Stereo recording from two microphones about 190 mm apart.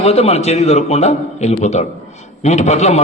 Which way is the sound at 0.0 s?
35° left (ahead or behind).